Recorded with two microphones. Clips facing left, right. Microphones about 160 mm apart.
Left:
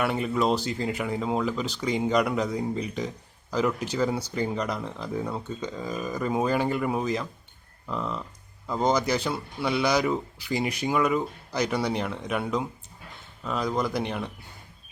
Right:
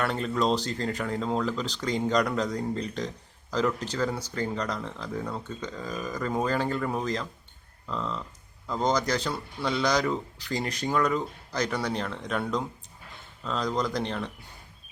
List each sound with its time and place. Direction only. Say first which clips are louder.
0.0 s speech: left 2 dB; 10° left (ahead or behind)